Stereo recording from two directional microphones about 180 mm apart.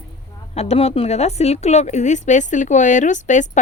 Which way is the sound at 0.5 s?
35° left (ahead or behind).